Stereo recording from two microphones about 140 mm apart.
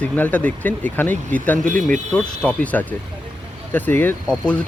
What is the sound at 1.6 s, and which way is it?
Speech, 65° right (ahead or behind).